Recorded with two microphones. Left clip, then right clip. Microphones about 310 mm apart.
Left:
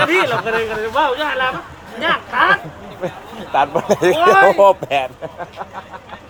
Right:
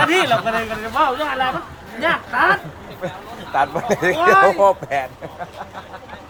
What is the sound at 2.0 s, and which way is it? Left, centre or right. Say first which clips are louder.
Speech: left 2 dB; centre.